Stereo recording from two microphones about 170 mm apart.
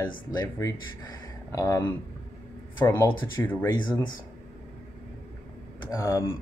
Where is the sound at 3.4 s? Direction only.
10° left (ahead or behind).